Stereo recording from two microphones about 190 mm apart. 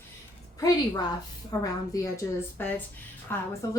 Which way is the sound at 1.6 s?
20° left (ahead or behind).